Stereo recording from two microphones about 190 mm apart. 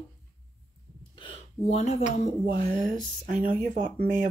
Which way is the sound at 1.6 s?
35° left (ahead or behind).